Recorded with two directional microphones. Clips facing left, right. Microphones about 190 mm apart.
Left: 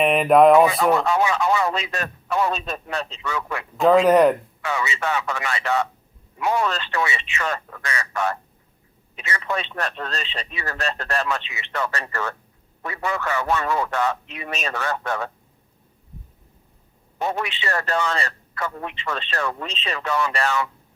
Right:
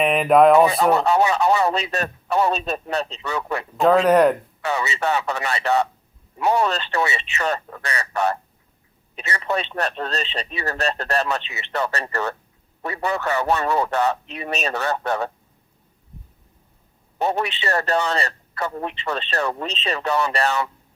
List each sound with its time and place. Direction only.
0.0 s speech: centre (ahead or behind)
0.7 s a man's voice: 35° right (ahead or behind)
3.8 s speech: centre (ahead or behind)
4.6 s a man's voice: 35° right (ahead or behind)
17.2 s a man's voice: 35° right (ahead or behind)